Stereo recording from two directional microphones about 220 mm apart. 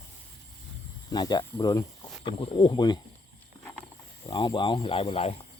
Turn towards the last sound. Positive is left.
turn(degrees=25)  # may be behind; listen again after turning